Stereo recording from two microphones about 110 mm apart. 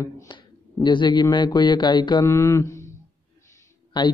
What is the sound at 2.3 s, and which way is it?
Mantra, 25° left (ahead or behind).